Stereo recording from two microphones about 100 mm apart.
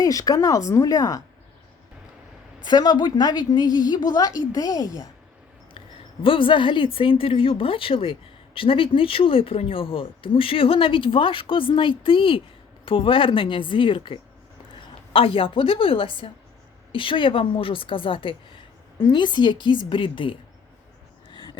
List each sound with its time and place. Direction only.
0.0 s speech: 35° left (ahead or behind)
2.6 s a woman's voice: 45° left (ahead or behind)
6.2 s a woman's voice: 60° left (ahead or behind)